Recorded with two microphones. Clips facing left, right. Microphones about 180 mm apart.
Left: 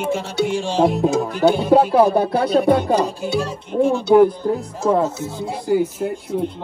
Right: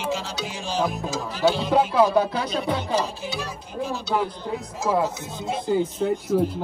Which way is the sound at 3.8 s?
60° left (ahead or behind).